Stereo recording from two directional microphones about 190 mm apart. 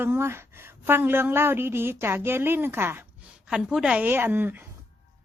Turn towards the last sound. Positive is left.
turn(degrees=-10)  # may be behind; listen again after turning